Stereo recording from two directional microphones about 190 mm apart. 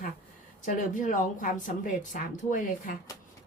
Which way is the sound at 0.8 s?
45° left (ahead or behind).